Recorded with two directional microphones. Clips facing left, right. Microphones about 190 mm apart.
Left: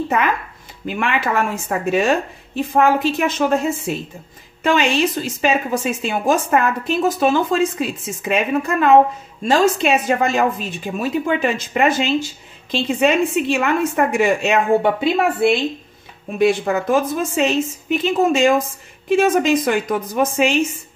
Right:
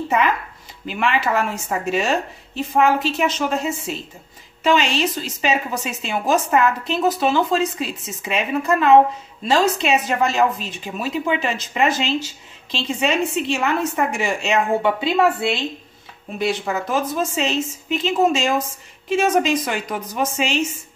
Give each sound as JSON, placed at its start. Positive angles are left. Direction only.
{"t": 0.8, "sound": "a woman's voice", "side_deg": 50}
{"t": 16.3, "sound": "a woman's voice", "side_deg": 50}